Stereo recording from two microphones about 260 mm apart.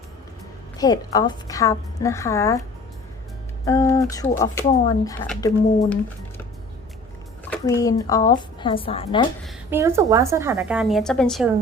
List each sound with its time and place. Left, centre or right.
0.8 s a woman's voice: centre
3.7 s a woman's voice: centre
7.5 s a woman's voice: centre
9.4 s a woman's voice: centre